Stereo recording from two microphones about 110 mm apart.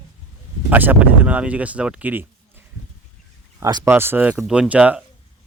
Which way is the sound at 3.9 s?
20° right (ahead or behind).